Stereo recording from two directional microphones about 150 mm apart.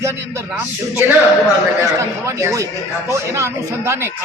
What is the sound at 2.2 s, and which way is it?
A man's voice, 20° right (ahead or behind).